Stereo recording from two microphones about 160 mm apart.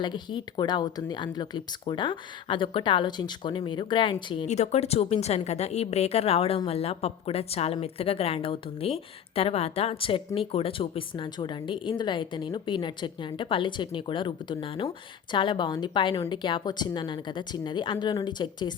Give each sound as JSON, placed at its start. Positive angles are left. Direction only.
{"t": 0.0, "sound": "speech", "side_deg": 30}
{"t": 4.4, "sound": "a woman's voice", "side_deg": 45}